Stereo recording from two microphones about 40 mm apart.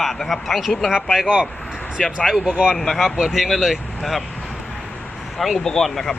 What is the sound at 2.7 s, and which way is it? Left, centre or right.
Speech, centre.